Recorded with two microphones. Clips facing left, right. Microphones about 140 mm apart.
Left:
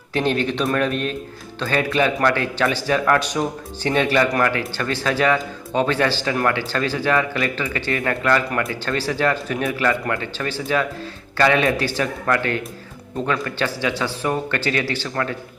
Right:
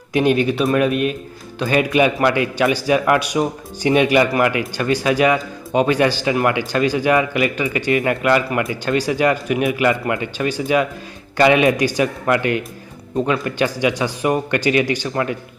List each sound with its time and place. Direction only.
0.1 s speech: 10° right (ahead or behind)